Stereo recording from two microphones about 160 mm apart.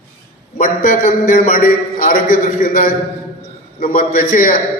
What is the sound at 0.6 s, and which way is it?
A man's voice, 60° left (ahead or behind).